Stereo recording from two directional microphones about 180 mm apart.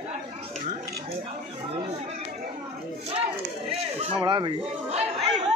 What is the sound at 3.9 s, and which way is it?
Chatter, 25° right (ahead or behind).